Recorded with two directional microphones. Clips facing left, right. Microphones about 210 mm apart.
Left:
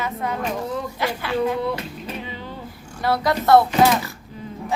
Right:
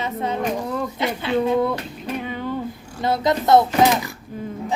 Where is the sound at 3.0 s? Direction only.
20° right (ahead or behind).